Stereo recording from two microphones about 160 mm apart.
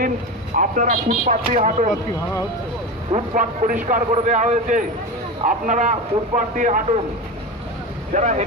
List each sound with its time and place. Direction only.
0.5 s a man's voice: 55° right (ahead or behind)
3.3 s a man's voice: 55° right (ahead or behind)
8.1 s a man's voice: 50° right (ahead or behind)